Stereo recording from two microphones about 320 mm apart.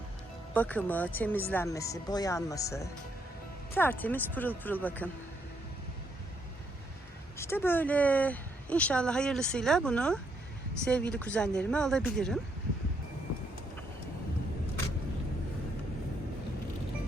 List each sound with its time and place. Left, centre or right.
0.5 s speech: centre
7.3 s speech: centre